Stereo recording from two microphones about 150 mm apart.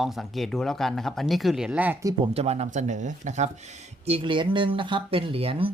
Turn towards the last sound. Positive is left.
turn(degrees=-40)  # may be behind; listen again after turning